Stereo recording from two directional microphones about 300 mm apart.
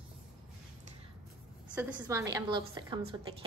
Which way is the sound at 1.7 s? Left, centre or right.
Centre.